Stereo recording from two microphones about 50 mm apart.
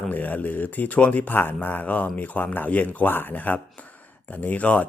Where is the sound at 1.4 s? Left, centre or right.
Left.